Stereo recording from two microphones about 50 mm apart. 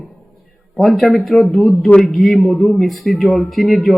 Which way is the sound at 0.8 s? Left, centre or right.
Centre.